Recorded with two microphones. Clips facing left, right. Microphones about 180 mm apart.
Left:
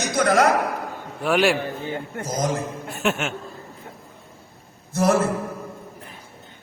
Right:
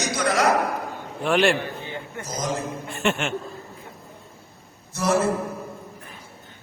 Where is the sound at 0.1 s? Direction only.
50° left (ahead or behind).